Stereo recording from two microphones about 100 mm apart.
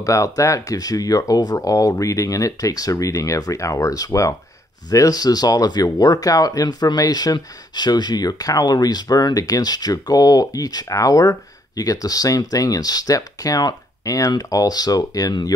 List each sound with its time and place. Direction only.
0.0 s speech: 30° left (ahead or behind)